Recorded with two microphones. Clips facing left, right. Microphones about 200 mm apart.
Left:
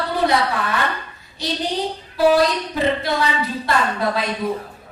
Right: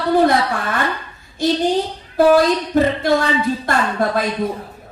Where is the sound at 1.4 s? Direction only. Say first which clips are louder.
Right 7 dB; 50° right (ahead or behind).